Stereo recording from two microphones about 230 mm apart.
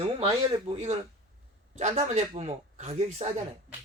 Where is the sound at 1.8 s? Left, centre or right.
Right.